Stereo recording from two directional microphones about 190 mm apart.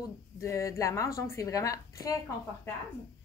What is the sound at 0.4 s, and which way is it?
A woman's voice, 15° left (ahead or behind).